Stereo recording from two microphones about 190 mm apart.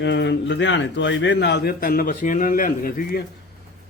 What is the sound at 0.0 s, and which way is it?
A man's voice, 70° left (ahead or behind).